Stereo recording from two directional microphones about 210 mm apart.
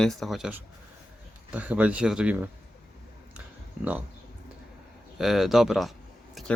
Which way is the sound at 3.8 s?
5° right (ahead or behind).